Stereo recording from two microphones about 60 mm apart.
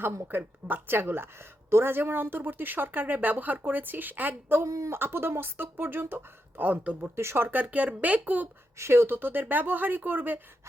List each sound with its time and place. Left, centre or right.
0.3 s speech: right
4.6 s speech: right
4.9 s speech: right
7.2 s speech: right
7.6 s speech: right
8.8 s speech: right